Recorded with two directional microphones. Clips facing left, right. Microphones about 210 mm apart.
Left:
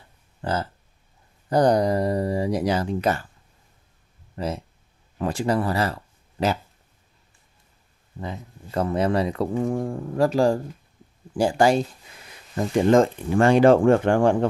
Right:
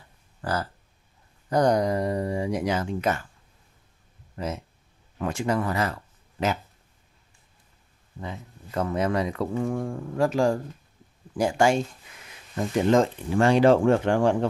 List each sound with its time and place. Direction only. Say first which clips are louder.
0.4 s speech: left 2 dB; 25° left (ahead or behind)
4.4 s speech: left 3 dB; 30° left (ahead or behind)
8.2 s speech: left 3 dB; 35° left (ahead or behind)
12.9 s speech: left 4 dB; 50° left (ahead or behind)